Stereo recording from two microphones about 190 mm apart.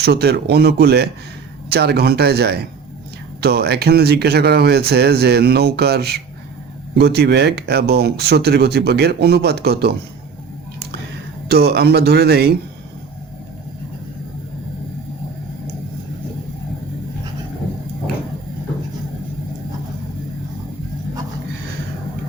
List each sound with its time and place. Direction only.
0.0 s speech: 60° right (ahead or behind)
11.4 s speech: 55° right (ahead or behind)